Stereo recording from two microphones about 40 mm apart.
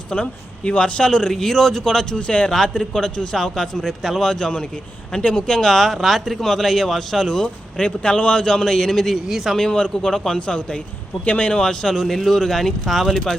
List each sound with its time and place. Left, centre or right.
0.1 s a man's voice: left
5.1 s speech: left
5.5 s a man's voice: centre
7.4 s a man's voice: left
9.2 s speech: centre
9.6 s a man's voice: centre
11.6 s a man's voice: centre
12.0 s a man's voice: centre